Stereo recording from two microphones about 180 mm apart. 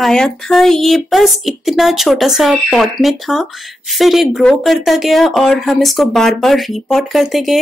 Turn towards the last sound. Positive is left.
turn(degrees=0)  # may be behind; listen again after turning